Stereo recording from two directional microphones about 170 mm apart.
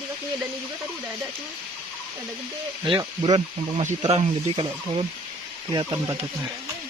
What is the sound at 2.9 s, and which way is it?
Speech, 25° right (ahead or behind).